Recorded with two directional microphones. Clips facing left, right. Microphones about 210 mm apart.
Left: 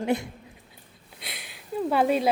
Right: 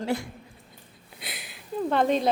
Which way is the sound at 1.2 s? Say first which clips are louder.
Right 1 dB; centre (ahead or behind).